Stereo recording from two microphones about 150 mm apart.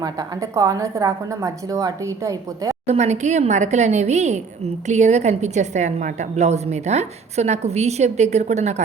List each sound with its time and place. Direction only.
0.0 s a woman's voice: 25° right (ahead or behind)
2.8 s a woman's voice: 45° right (ahead or behind)